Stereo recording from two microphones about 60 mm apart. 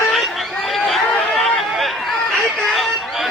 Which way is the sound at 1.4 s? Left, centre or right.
Centre.